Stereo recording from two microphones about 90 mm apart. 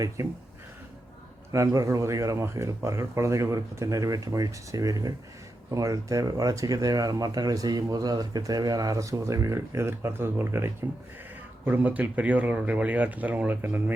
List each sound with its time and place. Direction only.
0.2 s speech: 35° right (ahead or behind)
1.5 s speech: 35° right (ahead or behind)